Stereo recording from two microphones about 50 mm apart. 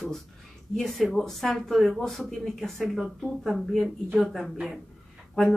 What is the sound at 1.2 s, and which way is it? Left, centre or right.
A woman's voice, centre.